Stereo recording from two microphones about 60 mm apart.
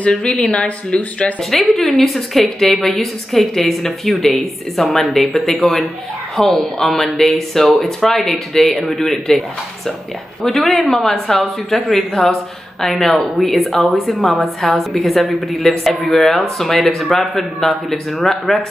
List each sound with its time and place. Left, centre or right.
0.1 s speech: centre
1.4 s a woman's voice: centre
10.7 s a woman's voice: centre